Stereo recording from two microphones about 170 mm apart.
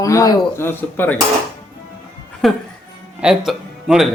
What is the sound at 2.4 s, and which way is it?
Speech, 5° left (ahead or behind).